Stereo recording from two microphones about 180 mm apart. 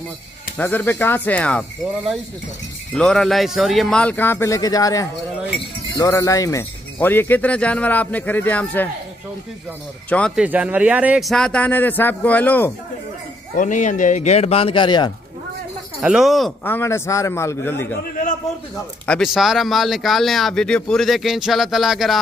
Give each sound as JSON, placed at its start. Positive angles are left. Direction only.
{"t": 0.6, "sound": "speech", "side_deg": 10}
{"t": 3.0, "sound": "speech", "side_deg": 5}
{"t": 10.0, "sound": "speech", "side_deg": 5}
{"t": 10.3, "sound": "speech", "side_deg": -5}
{"t": 13.6, "sound": "speech", "side_deg": 45}
{"t": 16.0, "sound": "speech", "side_deg": -5}
{"t": 16.6, "sound": "speech", "side_deg": 15}
{"t": 19.0, "sound": "speech", "side_deg": 0}